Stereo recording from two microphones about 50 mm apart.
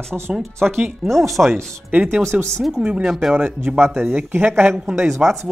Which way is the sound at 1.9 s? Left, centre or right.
Right.